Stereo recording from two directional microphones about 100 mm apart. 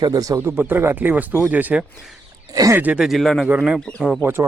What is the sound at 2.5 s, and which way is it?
Speech, 40° right (ahead or behind).